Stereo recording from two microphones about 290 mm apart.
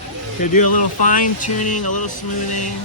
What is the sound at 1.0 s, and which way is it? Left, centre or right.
Speech, left.